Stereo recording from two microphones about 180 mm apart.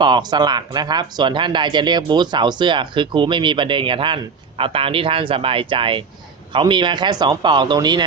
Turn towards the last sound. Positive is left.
turn(degrees=-25)  # may be behind; listen again after turning